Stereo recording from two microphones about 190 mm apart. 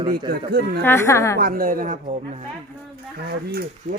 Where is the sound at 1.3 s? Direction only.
50° right (ahead or behind).